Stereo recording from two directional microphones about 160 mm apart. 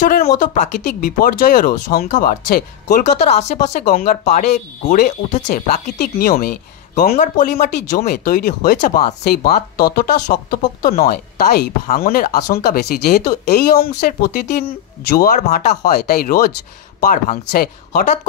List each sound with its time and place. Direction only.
0.0 s speech: 65° left (ahead or behind)
3.1 s speech: 45° left (ahead or behind)
3.8 s speech: 60° left (ahead or behind)
5.9 s speech: 70° left (ahead or behind)
7.2 s speech: 55° left (ahead or behind)
17.0 s speech: 55° left (ahead or behind)